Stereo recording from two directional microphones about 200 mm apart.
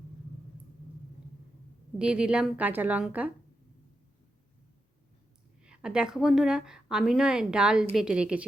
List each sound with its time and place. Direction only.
2.0 s a woman's voice: 5° right (ahead or behind)
5.6 s a woman's voice: 5° right (ahead or behind)